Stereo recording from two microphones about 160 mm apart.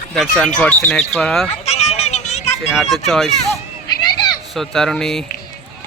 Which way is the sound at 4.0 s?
25° left (ahead or behind).